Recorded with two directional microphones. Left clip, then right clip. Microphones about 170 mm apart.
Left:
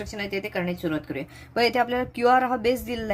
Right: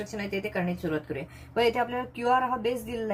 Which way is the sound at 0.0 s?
35° left (ahead or behind).